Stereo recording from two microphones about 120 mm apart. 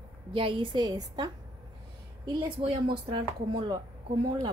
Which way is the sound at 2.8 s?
40° right (ahead or behind).